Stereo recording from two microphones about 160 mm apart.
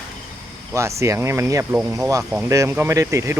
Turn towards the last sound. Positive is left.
turn(degrees=-20)  # may be behind; listen again after turning